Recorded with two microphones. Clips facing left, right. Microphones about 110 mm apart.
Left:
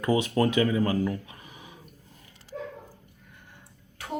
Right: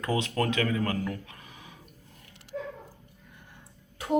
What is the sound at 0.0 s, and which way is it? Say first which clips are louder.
Speech: left 4 dB; 10° left (ahead or behind).